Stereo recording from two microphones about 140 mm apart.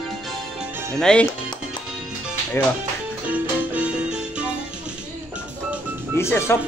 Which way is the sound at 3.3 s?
10° right (ahead or behind).